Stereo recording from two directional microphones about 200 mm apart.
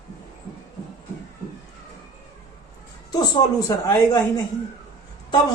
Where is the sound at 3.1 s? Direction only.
20° left (ahead or behind).